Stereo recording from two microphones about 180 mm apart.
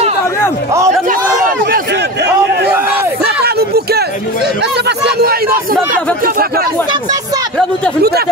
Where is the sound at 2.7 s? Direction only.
10° right (ahead or behind).